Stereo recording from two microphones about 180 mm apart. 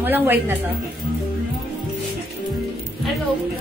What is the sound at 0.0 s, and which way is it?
Speech, 10° right (ahead or behind).